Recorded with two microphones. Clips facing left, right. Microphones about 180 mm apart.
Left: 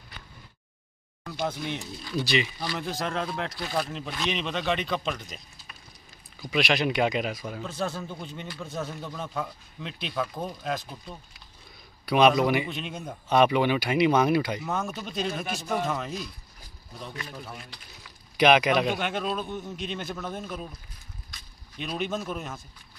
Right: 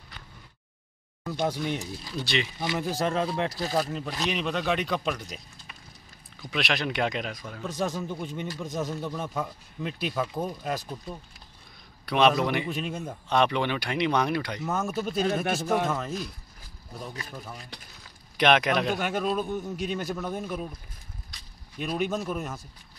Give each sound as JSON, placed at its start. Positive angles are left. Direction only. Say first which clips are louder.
{"t": 1.4, "sound": "a man's voice", "louder": "right 2 dB", "side_deg": -15}
{"t": 2.2, "sound": "a man's voice", "louder": "even", "side_deg": 0}
{"t": 3.3, "sound": "speech", "louder": "right 4 dB", "side_deg": -35}
{"t": 3.8, "sound": "a man's voice", "louder": "right 1 dB", "side_deg": -5}
{"t": 7.6, "sound": "a man's voice", "louder": "right 3 dB", "side_deg": -15}
{"t": 12.1, "sound": "speech", "louder": "left 2 dB", "side_deg": 5}
{"t": 12.6, "sound": "a man's voice", "louder": "right 3 dB", "side_deg": -5}
{"t": 13.3, "sound": "speech", "louder": "left 3 dB", "side_deg": 10}
{"t": 14.7, "sound": "a man's voice", "louder": "right 3 dB", "side_deg": -10}
{"t": 15.4, "sound": "speech", "louder": "right 4 dB", "side_deg": -55}
{"t": 18.4, "sound": "a man's voice", "louder": "left 2 dB", "side_deg": 0}
{"t": 21.9, "sound": "a man's voice", "louder": "right 2 dB", "side_deg": -10}